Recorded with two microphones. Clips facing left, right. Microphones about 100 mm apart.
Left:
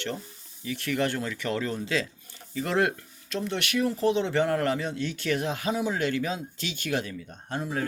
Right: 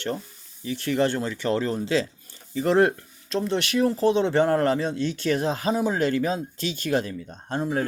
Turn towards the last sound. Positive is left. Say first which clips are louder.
# right 5 dB
turn(degrees=-35)  # may be behind; listen again after turning